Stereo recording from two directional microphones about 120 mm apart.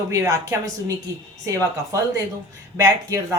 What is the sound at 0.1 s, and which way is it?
Speech, 25° right (ahead or behind).